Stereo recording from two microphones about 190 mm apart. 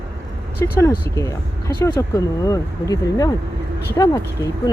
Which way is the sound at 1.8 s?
20° left (ahead or behind).